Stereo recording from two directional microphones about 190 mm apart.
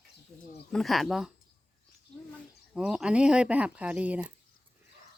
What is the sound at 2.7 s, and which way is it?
Speech, 5° right (ahead or behind).